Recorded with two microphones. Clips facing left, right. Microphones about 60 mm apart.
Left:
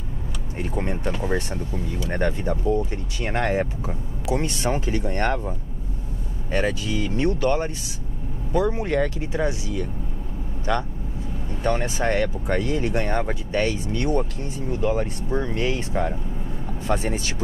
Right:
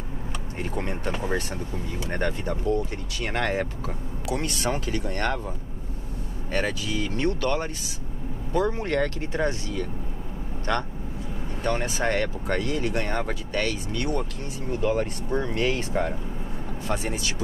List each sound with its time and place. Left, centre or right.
2.0 s speech: centre
6.5 s speech: left
11.6 s speech: left
14.7 s speech: centre
16.8 s speech: left